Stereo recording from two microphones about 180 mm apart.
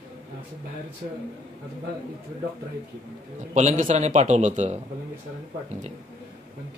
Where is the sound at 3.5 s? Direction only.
40° right (ahead or behind).